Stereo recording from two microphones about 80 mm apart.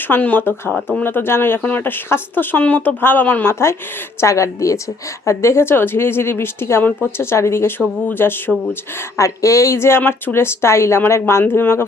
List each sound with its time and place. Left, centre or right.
0.1 s speech: left
9.1 s speech: left